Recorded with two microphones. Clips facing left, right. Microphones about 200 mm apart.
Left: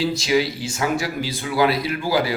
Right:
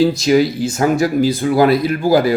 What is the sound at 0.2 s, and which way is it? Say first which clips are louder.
Speech: right 7 dB; 45° right (ahead or behind).